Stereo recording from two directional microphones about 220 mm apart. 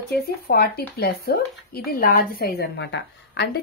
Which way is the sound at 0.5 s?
45° left (ahead or behind).